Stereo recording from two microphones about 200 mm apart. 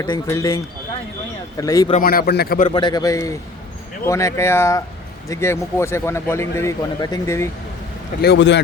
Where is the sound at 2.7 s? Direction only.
25° left (ahead or behind).